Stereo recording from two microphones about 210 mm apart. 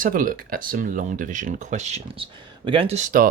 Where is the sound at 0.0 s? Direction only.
40° right (ahead or behind).